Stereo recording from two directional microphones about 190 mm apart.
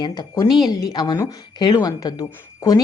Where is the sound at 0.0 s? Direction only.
20° left (ahead or behind).